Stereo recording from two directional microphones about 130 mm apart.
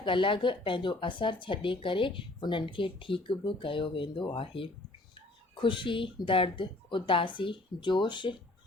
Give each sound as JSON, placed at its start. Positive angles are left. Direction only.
{"t": 0.0, "sound": "speech", "side_deg": 40}